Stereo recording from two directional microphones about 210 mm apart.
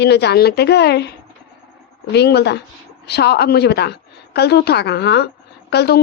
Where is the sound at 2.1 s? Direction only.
50° left (ahead or behind).